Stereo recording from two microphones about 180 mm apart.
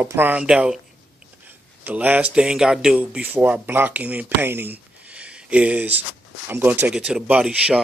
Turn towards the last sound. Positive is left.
turn(degrees=-5)  # may be behind; listen again after turning